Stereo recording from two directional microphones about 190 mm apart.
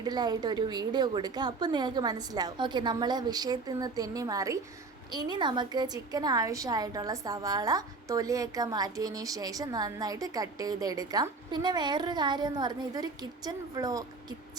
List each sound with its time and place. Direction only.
0.0 s a woman's voice: 20° right (ahead or behind)